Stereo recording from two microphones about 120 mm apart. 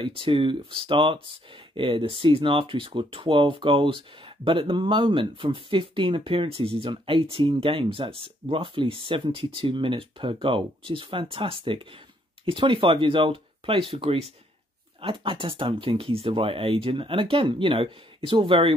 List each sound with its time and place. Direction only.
0.0 s speech: 45° right (ahead or behind)